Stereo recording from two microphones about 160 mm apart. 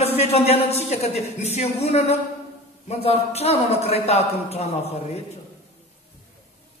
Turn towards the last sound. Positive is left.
turn(degrees=40)  # may be behind; listen again after turning